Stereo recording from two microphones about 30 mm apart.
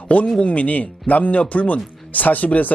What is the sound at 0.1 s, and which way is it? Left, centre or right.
A man's voice, left.